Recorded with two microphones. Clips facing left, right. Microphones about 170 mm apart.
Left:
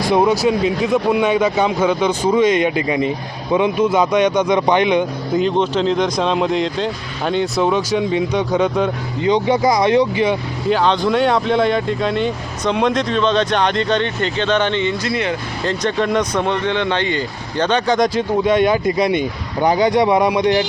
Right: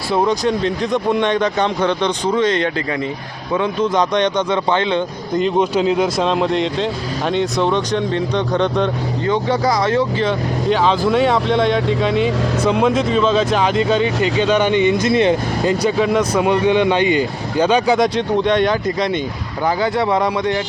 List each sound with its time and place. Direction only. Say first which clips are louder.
0.1 s speech: left 1 dB; 10° left (ahead or behind)
5.5 s speech: right 1 dB; 10° right (ahead or behind)
9.2 s speech: left 3 dB; 15° left (ahead or behind)
10.7 s speech: even; centre (ahead or behind); by 15.4 s 25° right (ahead or behind)
15.6 s speech: right 2 dB; 5° right (ahead or behind)
18.4 s speech: left 1 dB; 10° left (ahead or behind)